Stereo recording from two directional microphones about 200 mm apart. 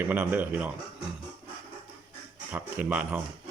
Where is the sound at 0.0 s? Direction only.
10° right (ahead or behind).